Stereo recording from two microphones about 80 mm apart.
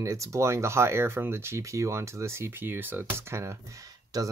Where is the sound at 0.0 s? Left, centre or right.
Right.